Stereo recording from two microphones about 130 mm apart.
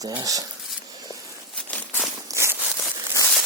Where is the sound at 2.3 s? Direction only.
20° right (ahead or behind).